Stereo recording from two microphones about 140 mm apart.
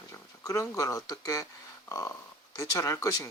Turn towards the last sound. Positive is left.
turn(degrees=25)  # may be behind; listen again after turning